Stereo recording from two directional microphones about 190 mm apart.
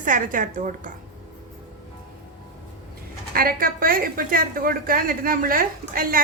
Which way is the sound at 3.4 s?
50° right (ahead or behind).